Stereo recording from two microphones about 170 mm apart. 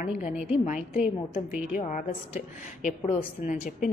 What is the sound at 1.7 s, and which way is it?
A woman's voice, 50° left (ahead or behind).